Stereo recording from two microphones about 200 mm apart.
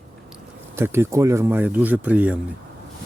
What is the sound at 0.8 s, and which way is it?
Speech, 15° right (ahead or behind).